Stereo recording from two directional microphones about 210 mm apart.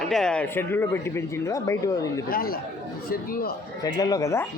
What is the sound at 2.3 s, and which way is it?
Speech, 45° left (ahead or behind).